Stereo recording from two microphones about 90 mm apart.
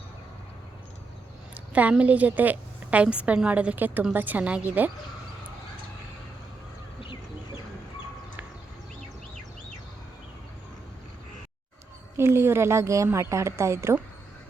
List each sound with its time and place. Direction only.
1.5 s a woman's voice: 15° right (ahead or behind)
7.0 s chicken: 65° left (ahead or behind)
12.1 s a woman's voice: 30° right (ahead or behind)